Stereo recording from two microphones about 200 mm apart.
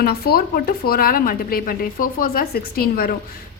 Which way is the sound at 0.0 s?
50° left (ahead or behind).